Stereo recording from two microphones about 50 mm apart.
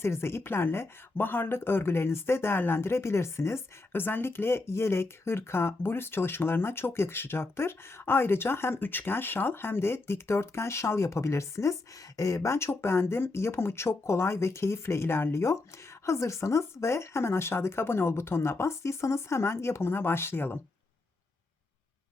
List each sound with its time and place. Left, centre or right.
0.0 s speech: left
3.9 s speech: left
16.0 s speech: left